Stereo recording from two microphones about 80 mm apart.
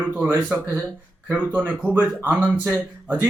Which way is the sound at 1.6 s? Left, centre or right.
Right.